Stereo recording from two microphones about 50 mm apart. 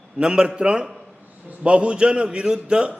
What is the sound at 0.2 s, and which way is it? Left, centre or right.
A man's voice, centre.